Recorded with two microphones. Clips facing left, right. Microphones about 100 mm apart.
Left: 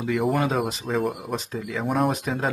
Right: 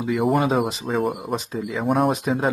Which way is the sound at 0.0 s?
5° right (ahead or behind).